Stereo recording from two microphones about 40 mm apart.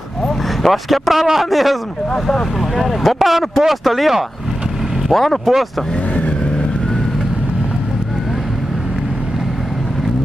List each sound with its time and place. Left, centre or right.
0.6 s speech: centre
2.8 s speech: centre
6.1 s vehicle: left